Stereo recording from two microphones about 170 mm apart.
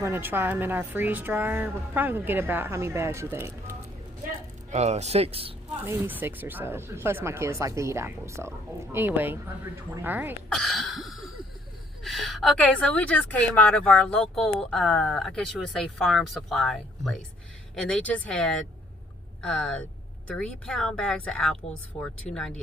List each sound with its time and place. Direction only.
0.0 s a woman's voice: 15° right (ahead or behind)
4.7 s speech: 40° right (ahead or behind)
5.8 s a woman's voice: 15° right (ahead or behind)
10.5 s a sound: centre (ahead or behind)
12.0 s speech: centre (ahead or behind)